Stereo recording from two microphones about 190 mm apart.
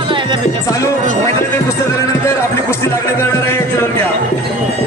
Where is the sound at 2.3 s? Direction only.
15° left (ahead or behind).